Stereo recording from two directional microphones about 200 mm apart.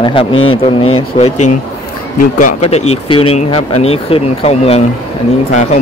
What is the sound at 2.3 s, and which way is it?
Speech, 35° left (ahead or behind).